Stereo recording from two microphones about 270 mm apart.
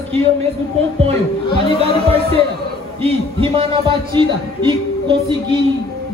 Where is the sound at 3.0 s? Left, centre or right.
Right.